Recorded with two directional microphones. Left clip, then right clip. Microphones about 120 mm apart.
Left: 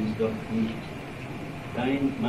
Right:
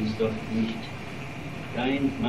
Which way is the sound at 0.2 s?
35° left (ahead or behind).